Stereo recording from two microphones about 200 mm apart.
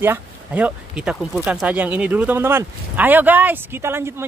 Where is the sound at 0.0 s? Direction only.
10° right (ahead or behind).